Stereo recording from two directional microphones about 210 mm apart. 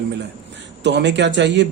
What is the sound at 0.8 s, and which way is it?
Speech, 55° right (ahead or behind).